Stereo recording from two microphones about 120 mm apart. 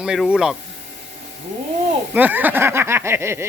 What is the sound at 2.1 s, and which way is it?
Speech, 15° right (ahead or behind).